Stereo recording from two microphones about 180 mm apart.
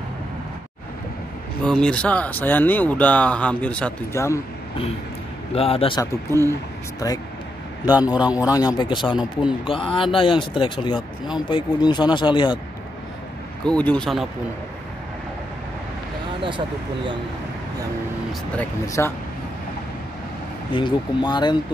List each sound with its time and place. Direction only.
1.6 s speech: 5° left (ahead or behind)
5.5 s a man's voice: 30° left (ahead or behind)
7.0 s speech: 20° left (ahead or behind)
7.9 s a man's voice: 5° right (ahead or behind)
8.5 s speech: 20° left (ahead or behind)
9.0 s speech: 5° right (ahead or behind)
9.7 s speech: 30° left (ahead or behind)
13.7 s speech: 5° left (ahead or behind)
16.4 s speech: 25° right (ahead or behind)
18.6 s speech: 15° left (ahead or behind)
20.7 s speech: 25° left (ahead or behind)